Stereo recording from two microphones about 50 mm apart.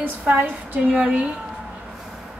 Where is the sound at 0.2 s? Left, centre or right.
Right.